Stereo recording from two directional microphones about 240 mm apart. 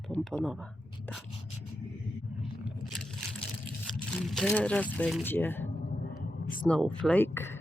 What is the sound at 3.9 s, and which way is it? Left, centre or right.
Speech, centre.